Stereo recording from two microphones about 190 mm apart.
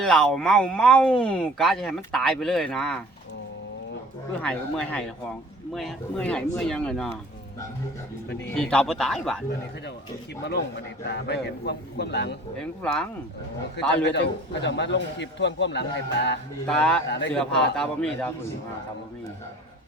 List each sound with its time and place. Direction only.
0.0 s speech: 5° left (ahead or behind)
4.4 s speech: 5° left (ahead or behind)
8.4 s speech: 5° left (ahead or behind)
11.0 s a man's voice: 65° left (ahead or behind)
12.5 s speech: 5° left (ahead or behind)
14.0 s a man's voice: 65° left (ahead or behind)
16.6 s speech: 5° left (ahead or behind)
17.1 s a man's voice: 65° left (ahead or behind)
17.3 s speech: 5° left (ahead or behind)